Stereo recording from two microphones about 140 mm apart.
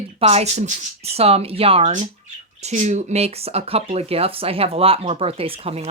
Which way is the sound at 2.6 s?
55° right (ahead or behind).